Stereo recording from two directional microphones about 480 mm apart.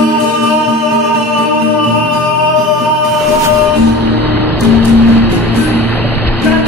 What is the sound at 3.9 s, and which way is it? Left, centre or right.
Music, right.